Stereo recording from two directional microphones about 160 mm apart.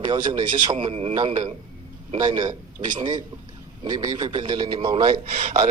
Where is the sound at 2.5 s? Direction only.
50° right (ahead or behind).